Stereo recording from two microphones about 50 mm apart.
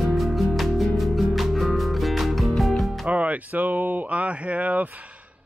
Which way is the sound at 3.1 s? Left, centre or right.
Right.